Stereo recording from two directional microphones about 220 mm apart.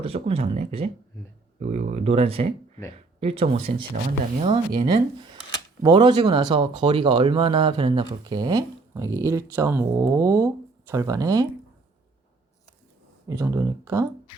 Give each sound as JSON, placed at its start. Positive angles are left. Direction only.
{"t": 0.0, "sound": "speech", "side_deg": -25}
{"t": 13.2, "sound": "speech", "side_deg": -15}